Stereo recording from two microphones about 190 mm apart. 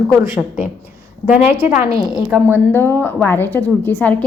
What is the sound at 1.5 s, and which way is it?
Speech, 35° left (ahead or behind).